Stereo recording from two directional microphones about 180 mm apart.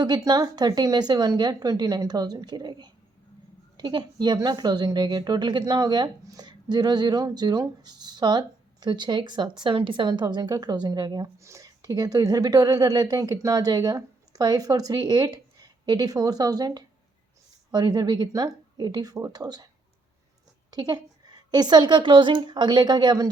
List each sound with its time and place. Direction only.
0.0 s a woman's voice: 20° right (ahead or behind)
20.7 s a woman's voice: 20° right (ahead or behind)